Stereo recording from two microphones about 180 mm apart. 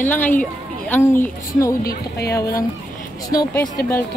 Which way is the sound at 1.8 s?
60° left (ahead or behind).